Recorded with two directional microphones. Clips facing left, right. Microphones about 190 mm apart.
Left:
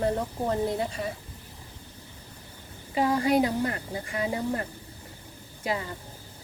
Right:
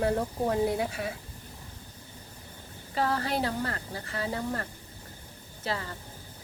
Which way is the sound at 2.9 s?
15° left (ahead or behind).